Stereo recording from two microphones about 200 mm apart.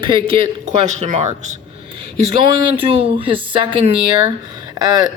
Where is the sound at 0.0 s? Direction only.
25° right (ahead or behind).